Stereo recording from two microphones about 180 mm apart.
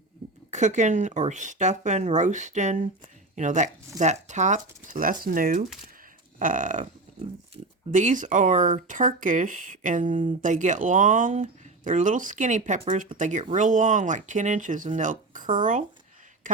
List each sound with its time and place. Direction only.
0.5 s speech: 40° right (ahead or behind)